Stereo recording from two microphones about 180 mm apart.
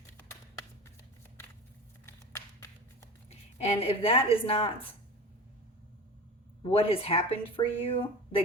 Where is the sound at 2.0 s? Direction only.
15° left (ahead or behind).